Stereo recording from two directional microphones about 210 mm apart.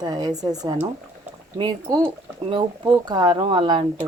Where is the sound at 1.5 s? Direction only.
20° right (ahead or behind).